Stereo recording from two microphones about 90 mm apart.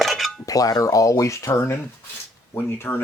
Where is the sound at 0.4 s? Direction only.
40° left (ahead or behind).